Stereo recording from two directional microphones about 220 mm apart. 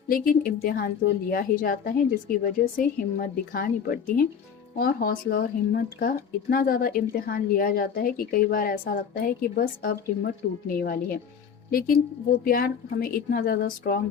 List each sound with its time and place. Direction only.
0.1 s speech: 40° left (ahead or behind)